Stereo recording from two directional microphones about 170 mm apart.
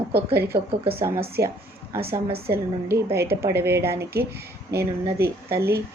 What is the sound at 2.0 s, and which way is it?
Speech, 35° right (ahead or behind).